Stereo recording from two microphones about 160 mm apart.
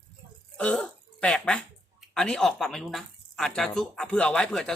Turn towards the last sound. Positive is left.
turn(degrees=5)  # may be behind; listen again after turning